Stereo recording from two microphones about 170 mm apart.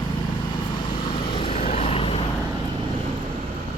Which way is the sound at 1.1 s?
30° left (ahead or behind).